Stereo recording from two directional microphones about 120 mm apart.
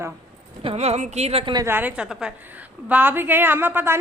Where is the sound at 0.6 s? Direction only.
55° right (ahead or behind).